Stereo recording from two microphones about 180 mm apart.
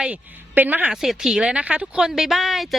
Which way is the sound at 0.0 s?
10° right (ahead or behind).